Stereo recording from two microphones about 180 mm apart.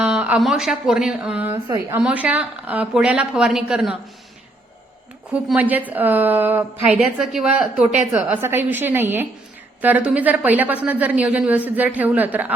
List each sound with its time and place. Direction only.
0.0 s speech: 5° right (ahead or behind)
1.6 s a woman's voice: 20° right (ahead or behind)
2.0 s a woman's voice: 5° right (ahead or behind)
5.3 s a woman's voice: 10° right (ahead or behind)